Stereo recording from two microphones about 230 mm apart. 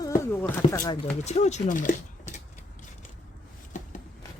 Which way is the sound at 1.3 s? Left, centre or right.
Left.